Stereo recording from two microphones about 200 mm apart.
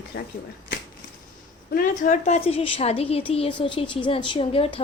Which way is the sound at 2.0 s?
35° left (ahead or behind).